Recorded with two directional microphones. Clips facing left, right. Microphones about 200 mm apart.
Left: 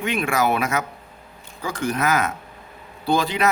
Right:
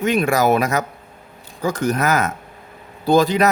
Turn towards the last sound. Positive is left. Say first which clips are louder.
# right 6 dB
turn(degrees=-40)  # may be behind; listen again after turning